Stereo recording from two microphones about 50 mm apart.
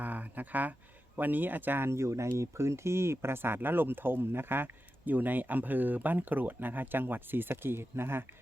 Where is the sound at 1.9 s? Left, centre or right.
Right.